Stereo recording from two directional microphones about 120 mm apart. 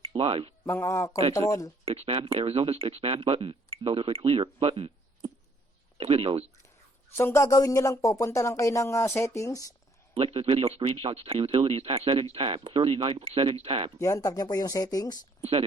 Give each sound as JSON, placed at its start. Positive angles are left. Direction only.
{"t": 0.0, "sound": "speech", "side_deg": -50}
{"t": 0.7, "sound": "speech", "side_deg": 25}
{"t": 1.8, "sound": "speech", "side_deg": -55}
{"t": 7.2, "sound": "speech", "side_deg": 20}
{"t": 10.2, "sound": "speech", "side_deg": -55}
{"t": 14.0, "sound": "speech", "side_deg": 25}
{"t": 15.4, "sound": "speech", "side_deg": -55}